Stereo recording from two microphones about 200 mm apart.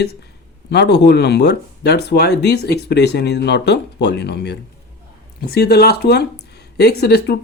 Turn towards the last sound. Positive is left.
turn(degrees=50)  # may be behind; listen again after turning